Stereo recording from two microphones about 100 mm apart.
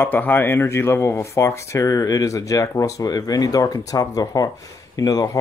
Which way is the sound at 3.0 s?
40° left (ahead or behind).